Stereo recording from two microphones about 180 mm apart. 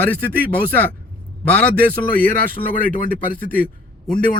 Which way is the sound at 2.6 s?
50° left (ahead or behind).